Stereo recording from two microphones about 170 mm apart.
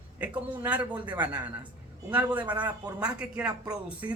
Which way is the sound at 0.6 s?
10° right (ahead or behind).